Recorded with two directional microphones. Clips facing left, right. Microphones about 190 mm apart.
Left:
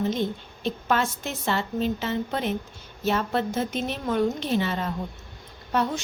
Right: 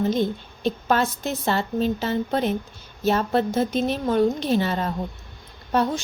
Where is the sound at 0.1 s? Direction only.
40° right (ahead or behind).